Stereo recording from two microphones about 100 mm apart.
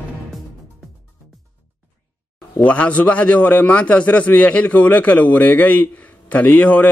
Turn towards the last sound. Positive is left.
turn(degrees=15)  # may be behind; listen again after turning